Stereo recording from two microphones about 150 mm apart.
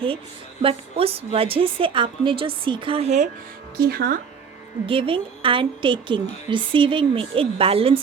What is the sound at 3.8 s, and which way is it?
Speech, 90° right.